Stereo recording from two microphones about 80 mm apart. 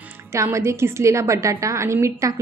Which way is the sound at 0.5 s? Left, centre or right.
Right.